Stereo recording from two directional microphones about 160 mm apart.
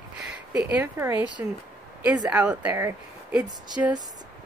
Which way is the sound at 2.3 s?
10° right (ahead or behind).